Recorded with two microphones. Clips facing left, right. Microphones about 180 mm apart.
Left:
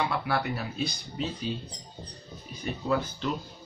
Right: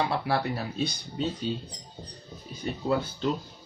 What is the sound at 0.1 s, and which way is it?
Speech, 30° right (ahead or behind).